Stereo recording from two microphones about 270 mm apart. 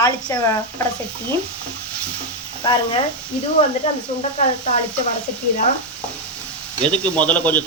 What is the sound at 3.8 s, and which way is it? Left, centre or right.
Speech, centre.